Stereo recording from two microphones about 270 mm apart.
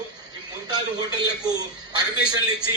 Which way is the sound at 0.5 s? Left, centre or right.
Centre.